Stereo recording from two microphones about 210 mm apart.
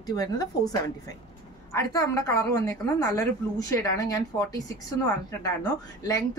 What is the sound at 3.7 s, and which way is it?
Speech, 15° left (ahead or behind).